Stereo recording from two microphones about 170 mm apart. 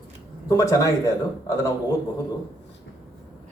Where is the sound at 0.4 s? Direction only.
20° left (ahead or behind).